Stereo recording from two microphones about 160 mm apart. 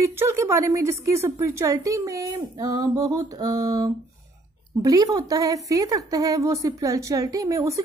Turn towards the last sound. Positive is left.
turn(degrees=-20)  # may be behind; listen again after turning